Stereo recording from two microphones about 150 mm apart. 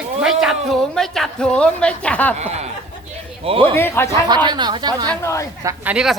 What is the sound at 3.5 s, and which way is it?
Speech, 40° right (ahead or behind).